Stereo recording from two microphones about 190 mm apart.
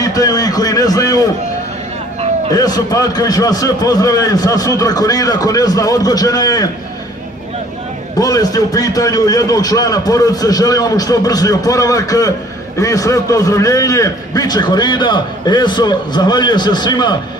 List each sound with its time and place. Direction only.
0.0 s a man's voice: 20° left (ahead or behind)
2.5 s a man's voice: 20° left (ahead or behind)
8.2 s a man's voice: 20° left (ahead or behind)